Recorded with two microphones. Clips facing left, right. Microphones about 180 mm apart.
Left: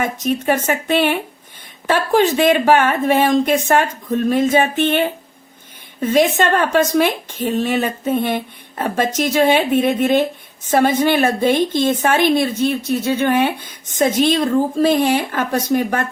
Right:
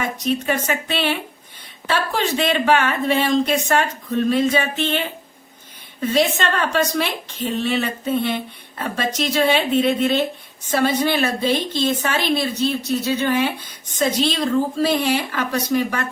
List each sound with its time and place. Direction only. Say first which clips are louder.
0.0 s a woman's voice: left 3 dB; 50° left (ahead or behind)